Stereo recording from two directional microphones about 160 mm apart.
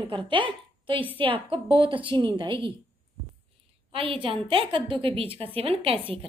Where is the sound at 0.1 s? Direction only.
30° right (ahead or behind).